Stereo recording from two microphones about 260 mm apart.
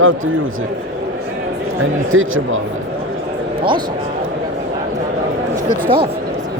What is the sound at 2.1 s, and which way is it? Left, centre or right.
Speech, right.